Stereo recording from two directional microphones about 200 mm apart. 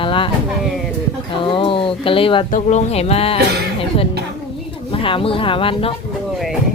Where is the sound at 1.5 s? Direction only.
25° left (ahead or behind).